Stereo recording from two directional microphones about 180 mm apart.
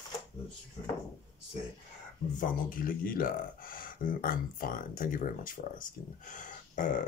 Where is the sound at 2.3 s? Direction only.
50° left (ahead or behind).